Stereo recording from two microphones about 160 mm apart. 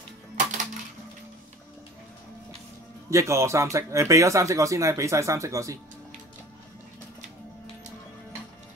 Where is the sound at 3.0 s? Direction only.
20° right (ahead or behind).